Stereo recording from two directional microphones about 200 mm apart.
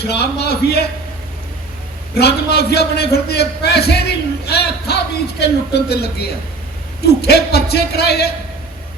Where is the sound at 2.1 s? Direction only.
55° left (ahead or behind).